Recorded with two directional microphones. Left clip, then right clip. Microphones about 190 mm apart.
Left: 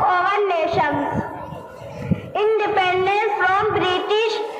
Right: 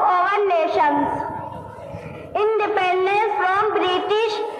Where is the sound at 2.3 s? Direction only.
20° right (ahead or behind).